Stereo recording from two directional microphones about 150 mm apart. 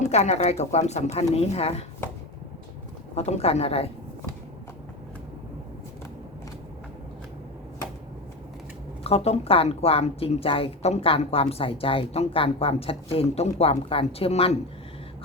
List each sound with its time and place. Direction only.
0.0 s speech: 45° left (ahead or behind)
3.2 s speech: 45° left (ahead or behind)
9.0 s speech: 45° left (ahead or behind)